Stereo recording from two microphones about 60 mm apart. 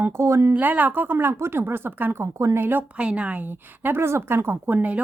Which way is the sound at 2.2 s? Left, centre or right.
Right.